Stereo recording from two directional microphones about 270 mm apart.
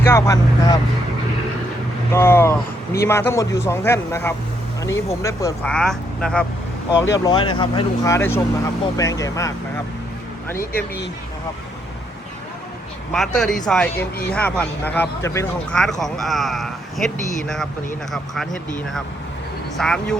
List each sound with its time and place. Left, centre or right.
0.0 s speech: centre
2.1 s speech: centre
7.3 s speech: centre
10.6 s speech: left
13.1 s speech: centre
19.7 s speech: centre